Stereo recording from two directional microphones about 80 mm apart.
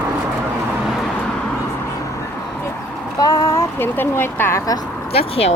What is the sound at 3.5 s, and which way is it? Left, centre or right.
Speech, left.